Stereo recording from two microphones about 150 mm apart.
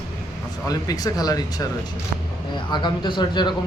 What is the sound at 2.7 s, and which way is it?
Speech, 30° left (ahead or behind).